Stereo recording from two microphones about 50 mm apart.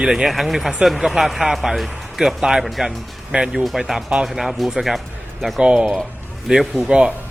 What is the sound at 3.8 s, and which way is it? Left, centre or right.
Speech, centre.